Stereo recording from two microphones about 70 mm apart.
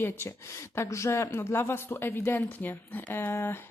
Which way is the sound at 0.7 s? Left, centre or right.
Left.